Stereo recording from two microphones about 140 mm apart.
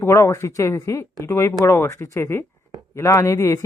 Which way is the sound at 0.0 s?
20° left (ahead or behind).